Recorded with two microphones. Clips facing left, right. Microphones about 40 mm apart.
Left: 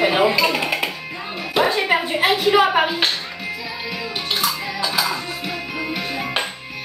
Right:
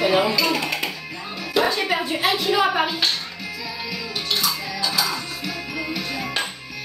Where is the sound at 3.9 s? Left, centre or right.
Left.